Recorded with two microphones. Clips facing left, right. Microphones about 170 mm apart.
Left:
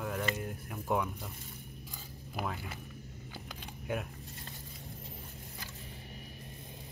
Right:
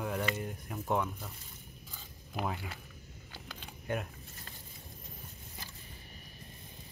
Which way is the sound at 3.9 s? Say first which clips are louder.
Even; 5° left (ahead or behind).